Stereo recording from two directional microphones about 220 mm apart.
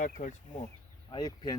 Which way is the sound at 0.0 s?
35° left (ahead or behind).